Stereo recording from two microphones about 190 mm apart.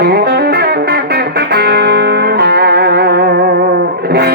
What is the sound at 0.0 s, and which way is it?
Music, 55° right (ahead or behind).